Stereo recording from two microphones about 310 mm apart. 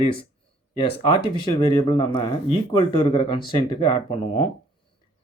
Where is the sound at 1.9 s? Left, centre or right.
Centre.